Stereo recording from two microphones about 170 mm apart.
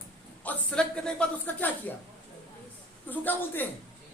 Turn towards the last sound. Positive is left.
turn(degrees=10)  # may be behind; listen again after turning